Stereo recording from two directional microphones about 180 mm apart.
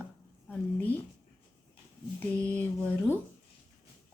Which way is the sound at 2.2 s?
10° left (ahead or behind).